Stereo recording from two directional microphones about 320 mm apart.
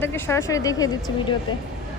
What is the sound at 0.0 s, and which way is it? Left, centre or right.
Speech, centre.